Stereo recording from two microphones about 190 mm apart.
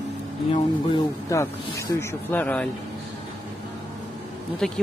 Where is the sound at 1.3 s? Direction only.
15° left (ahead or behind).